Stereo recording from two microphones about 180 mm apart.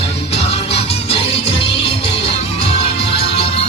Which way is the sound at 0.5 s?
35° left (ahead or behind).